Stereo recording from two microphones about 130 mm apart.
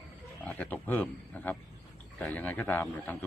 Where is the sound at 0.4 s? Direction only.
15° left (ahead or behind).